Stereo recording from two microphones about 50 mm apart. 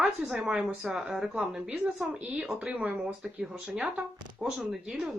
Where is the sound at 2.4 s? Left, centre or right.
Right.